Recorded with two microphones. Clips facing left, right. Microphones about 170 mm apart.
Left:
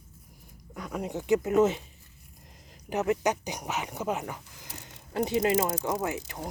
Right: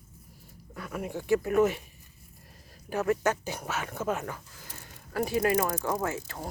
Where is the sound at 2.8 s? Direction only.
20° left (ahead or behind).